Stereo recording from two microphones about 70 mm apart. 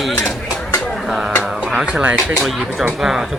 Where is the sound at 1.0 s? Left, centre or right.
Centre.